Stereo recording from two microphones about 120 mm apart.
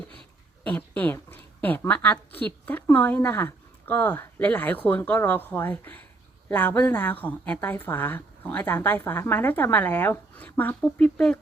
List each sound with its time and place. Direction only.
0.6 s a woman's voice: 15° left (ahead or behind)